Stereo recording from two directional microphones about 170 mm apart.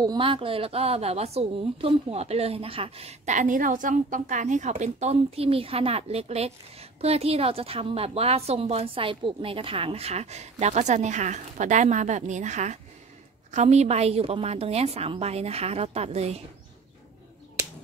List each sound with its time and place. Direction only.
0.0 s a woman's voice: 25° right (ahead or behind)